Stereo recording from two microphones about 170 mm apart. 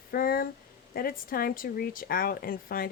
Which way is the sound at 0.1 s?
60° left (ahead or behind).